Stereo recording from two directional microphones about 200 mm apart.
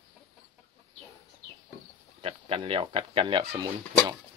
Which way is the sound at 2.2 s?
25° right (ahead or behind).